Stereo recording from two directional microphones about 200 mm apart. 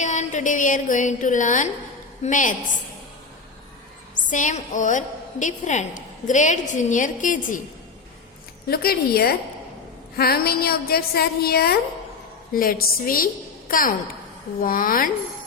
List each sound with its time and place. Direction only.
0.0 s a woman's voice: 35° left (ahead or behind)
4.3 s a woman's voice: 40° left (ahead or behind)
8.7 s a woman's voice: 50° left (ahead or behind)